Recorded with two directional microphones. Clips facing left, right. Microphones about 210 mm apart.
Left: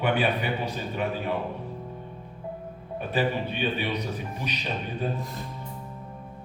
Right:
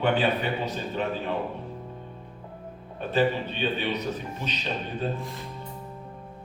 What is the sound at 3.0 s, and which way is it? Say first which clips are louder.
A man's voice: right 2 dB; 10° left (ahead or behind).